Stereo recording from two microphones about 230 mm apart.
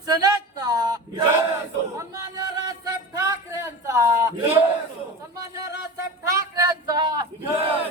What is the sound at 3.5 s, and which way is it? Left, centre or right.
A man's voice, centre.